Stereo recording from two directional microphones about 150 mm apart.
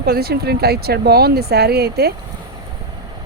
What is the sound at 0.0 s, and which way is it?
A woman's voice, 90° right.